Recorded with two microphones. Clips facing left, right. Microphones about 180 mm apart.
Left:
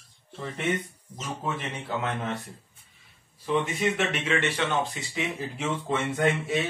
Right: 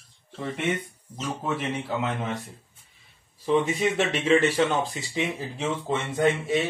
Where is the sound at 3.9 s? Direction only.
35° right (ahead or behind).